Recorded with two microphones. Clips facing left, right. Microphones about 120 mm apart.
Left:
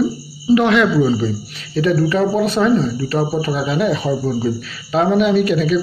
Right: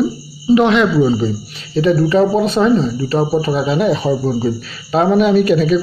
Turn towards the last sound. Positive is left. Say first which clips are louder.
# right 3 dB
turn(degrees=-35)  # may be behind; listen again after turning